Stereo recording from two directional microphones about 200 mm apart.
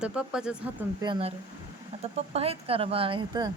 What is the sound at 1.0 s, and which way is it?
Speech, 25° right (ahead or behind).